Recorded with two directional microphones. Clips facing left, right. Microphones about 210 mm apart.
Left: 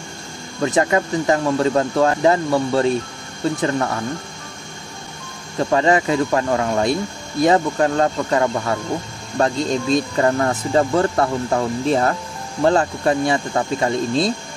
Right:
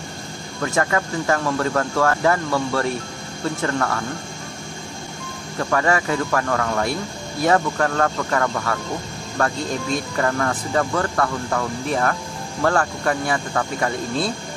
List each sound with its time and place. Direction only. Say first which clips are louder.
0.6 s speech: left 4 dB; 20° left (ahead or behind)
5.6 s speech: left 4 dB; 20° left (ahead or behind)